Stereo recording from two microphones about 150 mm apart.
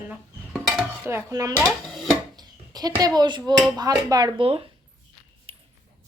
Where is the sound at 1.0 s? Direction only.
20° right (ahead or behind).